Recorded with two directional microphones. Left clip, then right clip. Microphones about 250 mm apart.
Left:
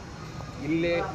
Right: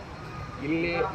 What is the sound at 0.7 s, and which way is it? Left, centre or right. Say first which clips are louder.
Speech: left 1 dB; centre.